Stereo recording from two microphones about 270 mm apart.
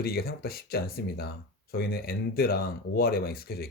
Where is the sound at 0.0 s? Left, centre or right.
Left.